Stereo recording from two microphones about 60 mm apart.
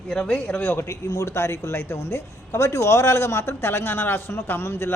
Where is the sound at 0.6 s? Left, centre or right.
Left.